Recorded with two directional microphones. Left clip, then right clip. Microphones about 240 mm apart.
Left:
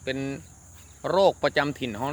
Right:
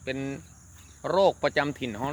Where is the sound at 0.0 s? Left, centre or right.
Centre.